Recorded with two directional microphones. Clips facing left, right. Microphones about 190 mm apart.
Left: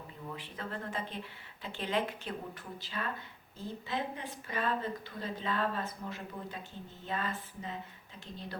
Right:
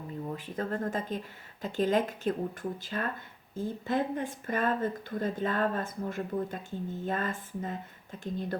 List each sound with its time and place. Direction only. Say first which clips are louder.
0.3 s speech: right 7 dB; 45° right (ahead or behind)